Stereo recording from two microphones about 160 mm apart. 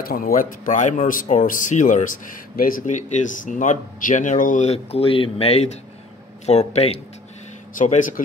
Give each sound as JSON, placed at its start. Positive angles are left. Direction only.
{"t": 0.0, "sound": "speech", "side_deg": 65}
{"t": 7.7, "sound": "speech", "side_deg": 50}